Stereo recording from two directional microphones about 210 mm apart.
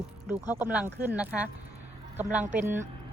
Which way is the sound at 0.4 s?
5° right (ahead or behind).